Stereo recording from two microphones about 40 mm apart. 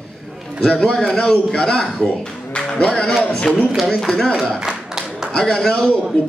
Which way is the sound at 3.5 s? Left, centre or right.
Centre.